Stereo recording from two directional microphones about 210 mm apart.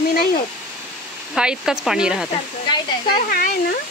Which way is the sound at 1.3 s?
5° right (ahead or behind).